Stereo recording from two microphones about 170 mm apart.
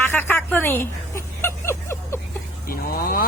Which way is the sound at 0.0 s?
10° left (ahead or behind).